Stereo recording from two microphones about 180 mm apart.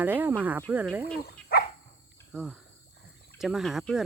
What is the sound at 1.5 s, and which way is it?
Dog, 55° left (ahead or behind).